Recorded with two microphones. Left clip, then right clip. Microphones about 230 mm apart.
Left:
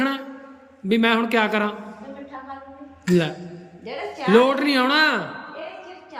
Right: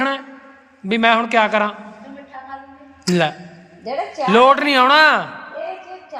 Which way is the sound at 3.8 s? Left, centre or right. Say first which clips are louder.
Right 5 dB; right.